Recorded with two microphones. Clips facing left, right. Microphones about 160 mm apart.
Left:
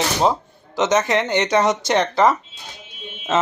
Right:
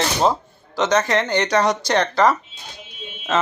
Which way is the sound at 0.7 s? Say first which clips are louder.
Left 1 dB; 20° left (ahead or behind).